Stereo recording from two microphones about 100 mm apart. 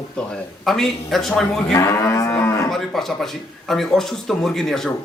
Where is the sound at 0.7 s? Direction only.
Centre (ahead or behind).